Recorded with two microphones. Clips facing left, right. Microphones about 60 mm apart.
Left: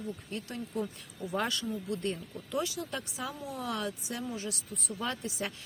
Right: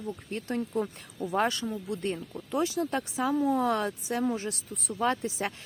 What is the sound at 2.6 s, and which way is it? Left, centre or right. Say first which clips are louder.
Speech: right 7 dB; right.